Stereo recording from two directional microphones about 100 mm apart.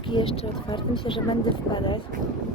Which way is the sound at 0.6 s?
55° left (ahead or behind).